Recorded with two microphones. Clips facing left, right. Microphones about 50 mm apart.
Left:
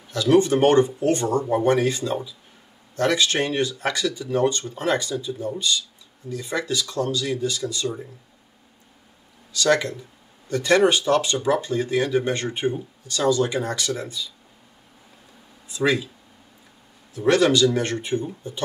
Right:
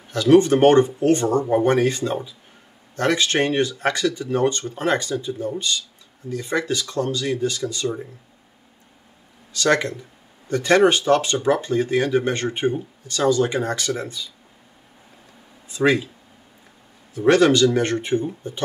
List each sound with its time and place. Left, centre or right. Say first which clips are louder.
0.1 s speech: right 3 dB; right
9.5 s speech: right 1 dB; right
15.7 s speech: right 3 dB; right
17.3 s speech: right 3 dB; right